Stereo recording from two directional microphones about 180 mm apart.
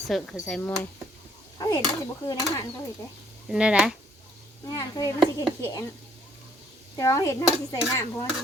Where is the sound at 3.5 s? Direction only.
5° right (ahead or behind).